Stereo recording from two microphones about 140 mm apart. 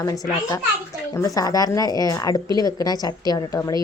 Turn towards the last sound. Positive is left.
turn(degrees=30)  # may be behind; listen again after turning